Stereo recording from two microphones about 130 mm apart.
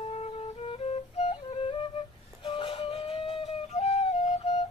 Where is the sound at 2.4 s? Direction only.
40° left (ahead or behind).